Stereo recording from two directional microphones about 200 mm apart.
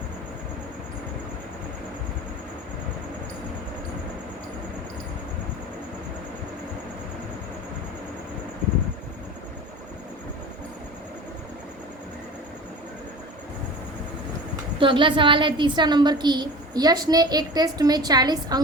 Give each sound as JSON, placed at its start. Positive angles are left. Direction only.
{"t": 14.8, "sound": "a woman's voice", "side_deg": -25}